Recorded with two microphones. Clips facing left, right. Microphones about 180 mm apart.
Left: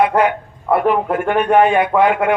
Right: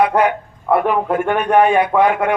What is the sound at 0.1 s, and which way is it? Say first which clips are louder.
A man's voice: even; centre (ahead or behind).